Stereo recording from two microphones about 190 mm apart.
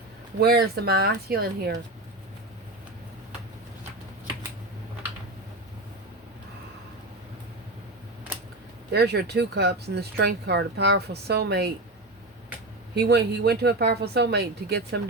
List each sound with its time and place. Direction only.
0.3 s speech: 55° right (ahead or behind)
8.9 s speech: 60° right (ahead or behind)
12.9 s speech: 60° right (ahead or behind)